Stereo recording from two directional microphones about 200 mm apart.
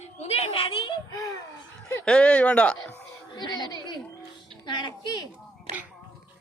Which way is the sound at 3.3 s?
20° left (ahead or behind).